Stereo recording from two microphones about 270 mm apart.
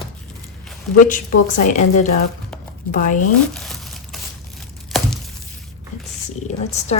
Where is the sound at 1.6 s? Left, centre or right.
Left.